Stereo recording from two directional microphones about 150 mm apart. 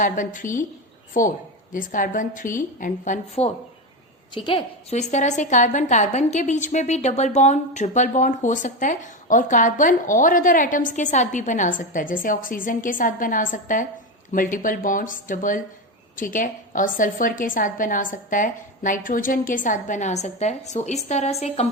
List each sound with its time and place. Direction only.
0.0 s a woman's voice: 60° left (ahead or behind)
4.4 s a woman's voice: 35° left (ahead or behind)
4.9 s a woman's voice: 50° left (ahead or behind)